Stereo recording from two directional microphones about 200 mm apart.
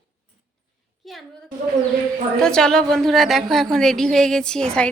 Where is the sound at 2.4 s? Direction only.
5° left (ahead or behind).